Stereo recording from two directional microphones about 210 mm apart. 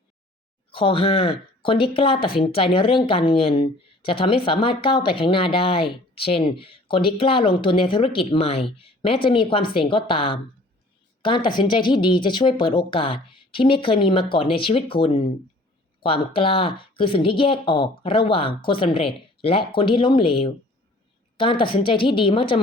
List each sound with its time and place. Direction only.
0.7 s speech: 25° left (ahead or behind)